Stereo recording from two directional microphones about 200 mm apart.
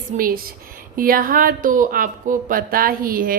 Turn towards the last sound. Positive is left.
turn(degrees=-45)  # may be behind; listen again after turning